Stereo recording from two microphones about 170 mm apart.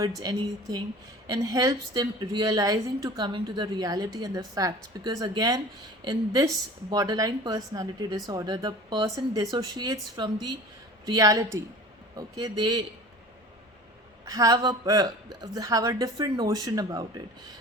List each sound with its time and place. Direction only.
0.0 s a woman's voice: 20° right (ahead or behind)
14.3 s a woman's voice: 20° right (ahead or behind)